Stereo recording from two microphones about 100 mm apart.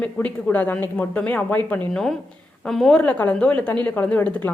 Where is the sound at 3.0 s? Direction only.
15° left (ahead or behind).